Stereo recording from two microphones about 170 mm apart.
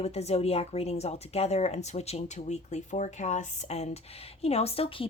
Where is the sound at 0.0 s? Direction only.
40° left (ahead or behind).